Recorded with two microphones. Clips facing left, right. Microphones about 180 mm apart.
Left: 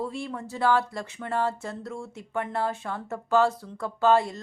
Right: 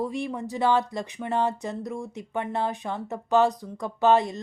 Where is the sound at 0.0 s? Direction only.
15° right (ahead or behind).